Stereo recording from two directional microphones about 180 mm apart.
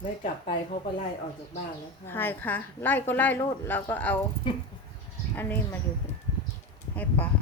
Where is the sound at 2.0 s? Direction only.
10° left (ahead or behind).